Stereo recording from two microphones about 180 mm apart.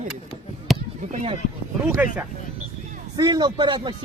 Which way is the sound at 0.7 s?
Centre (ahead or behind).